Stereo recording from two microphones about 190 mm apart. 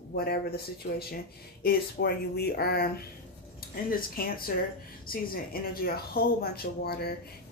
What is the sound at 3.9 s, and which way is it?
Speech, 50° left (ahead or behind).